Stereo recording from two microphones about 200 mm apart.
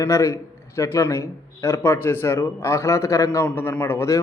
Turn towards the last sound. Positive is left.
turn(degrees=15)  # may be behind; listen again after turning